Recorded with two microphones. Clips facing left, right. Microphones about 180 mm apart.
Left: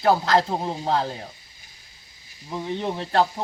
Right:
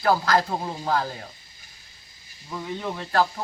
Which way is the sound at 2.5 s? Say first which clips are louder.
Left 3 dB; 25° left (ahead or behind).